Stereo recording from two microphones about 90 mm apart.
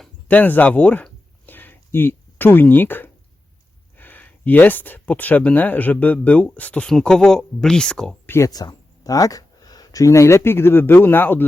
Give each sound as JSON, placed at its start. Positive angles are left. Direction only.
{"t": 0.3, "sound": "a sound", "side_deg": 20}
{"t": 3.9, "sound": "speech", "side_deg": 20}
{"t": 8.4, "sound": "speech", "side_deg": 45}